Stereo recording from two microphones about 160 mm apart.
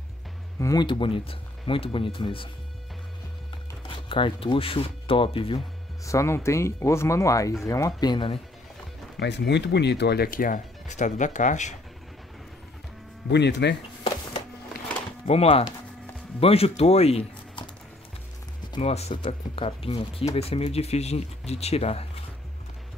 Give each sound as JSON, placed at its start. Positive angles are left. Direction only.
{"t": 0.6, "sound": "speech", "side_deg": 20}
{"t": 0.8, "sound": "speech", "side_deg": 30}
{"t": 3.8, "sound": "speech", "side_deg": 30}
{"t": 6.0, "sound": "speech", "side_deg": 20}
{"t": 9.1, "sound": "speech", "side_deg": 90}
{"t": 13.3, "sound": "speech", "side_deg": 90}
{"t": 15.2, "sound": "speech", "side_deg": 40}
{"t": 18.8, "sound": "speech", "side_deg": 40}